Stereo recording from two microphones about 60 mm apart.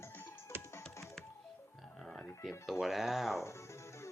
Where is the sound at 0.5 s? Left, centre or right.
Right.